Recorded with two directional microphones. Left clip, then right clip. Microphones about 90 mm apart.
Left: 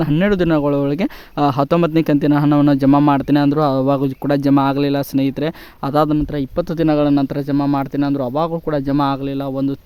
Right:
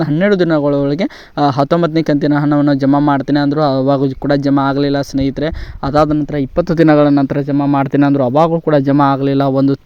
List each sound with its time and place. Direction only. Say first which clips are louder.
0.2 s speech: right 5 dB; 5° right (ahead or behind)
6.6 s speech: right 7 dB; 40° right (ahead or behind)
7.5 s speech: right 2 dB; 20° right (ahead or behind)
7.9 s speech: right 7 dB; 60° right (ahead or behind)
8.5 s speech: right 7 dB; 45° right (ahead or behind)